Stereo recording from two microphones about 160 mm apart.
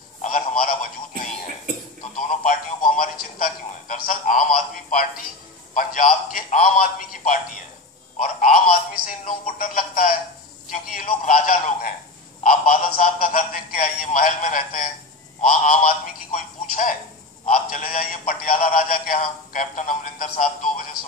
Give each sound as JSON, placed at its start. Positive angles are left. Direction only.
{"t": 0.2, "sound": "telephone", "side_deg": 55}
{"t": 2.1, "sound": "a sound", "side_deg": 55}
{"t": 3.0, "sound": "a man's voice", "side_deg": 60}